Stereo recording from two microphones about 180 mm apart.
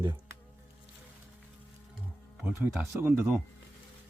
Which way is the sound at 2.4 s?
10° right (ahead or behind).